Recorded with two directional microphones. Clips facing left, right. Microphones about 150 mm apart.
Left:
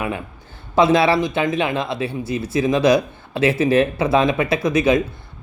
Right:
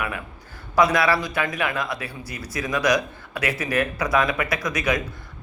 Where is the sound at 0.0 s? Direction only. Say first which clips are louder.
Left 5 dB; 25° left (ahead or behind).